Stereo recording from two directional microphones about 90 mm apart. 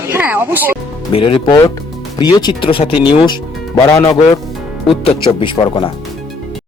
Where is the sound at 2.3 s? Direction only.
55° left (ahead or behind).